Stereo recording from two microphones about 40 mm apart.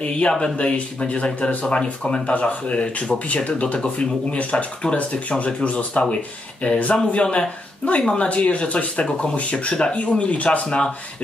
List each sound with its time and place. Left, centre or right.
0.0 s speech: left
8.0 s speech: left
8.3 s speech: left